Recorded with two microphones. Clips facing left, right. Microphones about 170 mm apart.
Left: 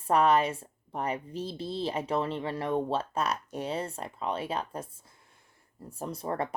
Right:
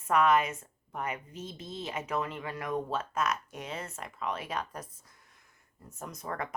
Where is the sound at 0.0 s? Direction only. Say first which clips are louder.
Left 2 dB; 35° left (ahead or behind).